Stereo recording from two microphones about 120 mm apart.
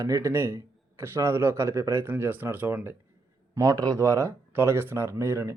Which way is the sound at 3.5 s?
30° right (ahead or behind).